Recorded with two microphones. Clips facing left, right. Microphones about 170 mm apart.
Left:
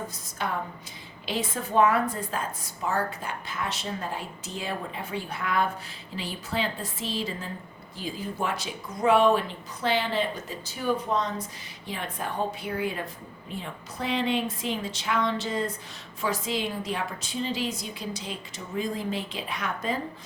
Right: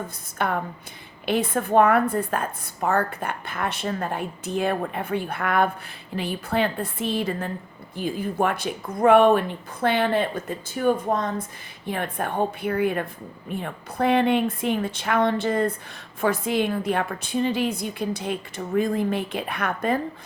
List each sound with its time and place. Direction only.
0.3 s a woman's voice: 55° right (ahead or behind)